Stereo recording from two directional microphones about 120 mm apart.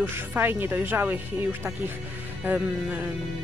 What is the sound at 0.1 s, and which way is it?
Speech, 20° right (ahead or behind).